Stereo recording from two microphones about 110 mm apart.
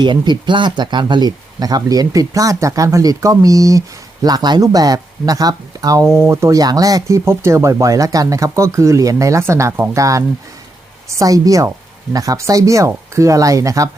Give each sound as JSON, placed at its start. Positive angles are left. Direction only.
{"t": 0.0, "sound": "speech", "side_deg": -45}